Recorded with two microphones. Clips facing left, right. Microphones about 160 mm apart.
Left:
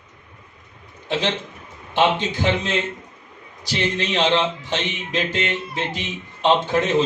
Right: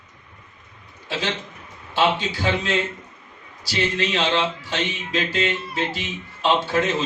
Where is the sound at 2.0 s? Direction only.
20° left (ahead or behind).